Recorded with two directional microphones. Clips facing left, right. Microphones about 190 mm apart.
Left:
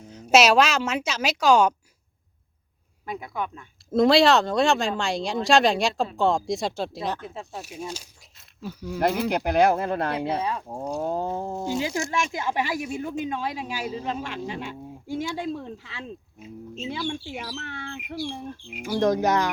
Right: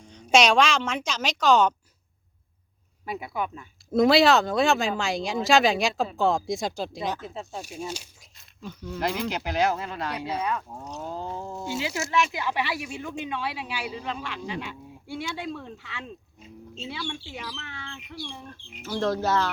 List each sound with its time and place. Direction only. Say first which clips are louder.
0.0 s a woman's voice: left 2 dB; 5° left (ahead or behind)
3.1 s speech: even; 5° right (ahead or behind)
9.3 s speech: left 5 dB; 55° left (ahead or behind)
10.4 s speech: left 1 dB; 30° left (ahead or behind)
11.0 s speech: left 5 dB; 55° left (ahead or behind)
18.7 s speech: left 4 dB; 10° left (ahead or behind)